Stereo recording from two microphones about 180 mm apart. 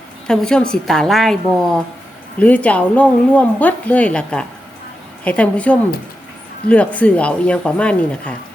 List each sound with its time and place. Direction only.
0.3 s a woman's voice: 5° left (ahead or behind)